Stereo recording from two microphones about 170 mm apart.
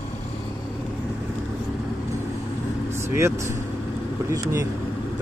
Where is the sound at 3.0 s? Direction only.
15° right (ahead or behind).